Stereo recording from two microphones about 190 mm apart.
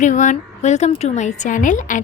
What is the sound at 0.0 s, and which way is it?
A woman's voice, 40° left (ahead or behind).